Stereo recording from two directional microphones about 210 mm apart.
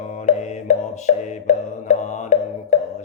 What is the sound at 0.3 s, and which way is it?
Music, 35° left (ahead or behind).